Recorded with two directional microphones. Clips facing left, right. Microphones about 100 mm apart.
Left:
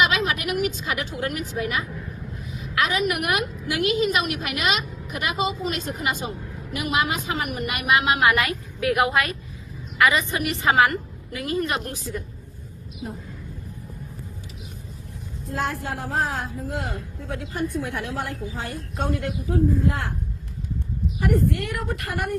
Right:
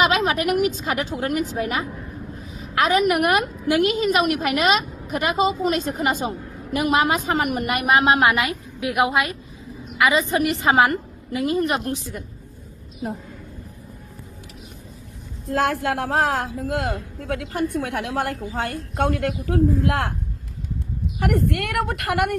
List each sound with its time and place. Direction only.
0.0 s a woman's voice: 40° right (ahead or behind)
8.3 s a woman's voice: 20° right (ahead or behind)
15.4 s a woman's voice: 75° right (ahead or behind)
21.2 s a woman's voice: 70° right (ahead or behind)